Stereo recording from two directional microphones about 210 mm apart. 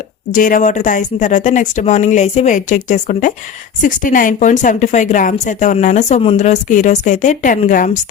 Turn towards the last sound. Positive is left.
turn(degrees=35)  # may be behind; listen again after turning